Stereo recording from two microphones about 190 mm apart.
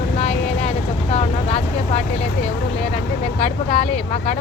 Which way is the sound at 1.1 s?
30° left (ahead or behind).